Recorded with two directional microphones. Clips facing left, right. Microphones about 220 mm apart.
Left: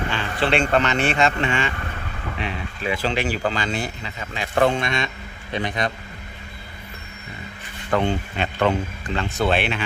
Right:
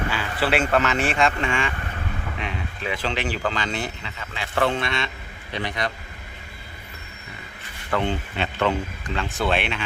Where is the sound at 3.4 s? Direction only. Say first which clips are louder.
Left 2 dB; 40° left (ahead or behind).